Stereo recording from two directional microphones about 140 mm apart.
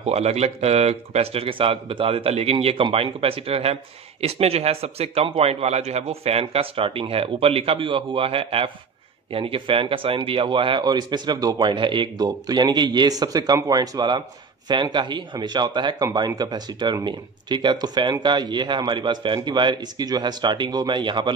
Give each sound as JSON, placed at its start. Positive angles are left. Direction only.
{"t": 0.0, "sound": "a man's voice", "side_deg": -50}